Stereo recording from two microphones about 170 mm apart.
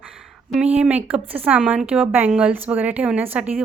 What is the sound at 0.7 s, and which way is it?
Speech, 10° right (ahead or behind).